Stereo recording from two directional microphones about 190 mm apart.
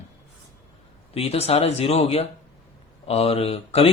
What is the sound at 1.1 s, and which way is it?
A man's voice, 30° left (ahead or behind).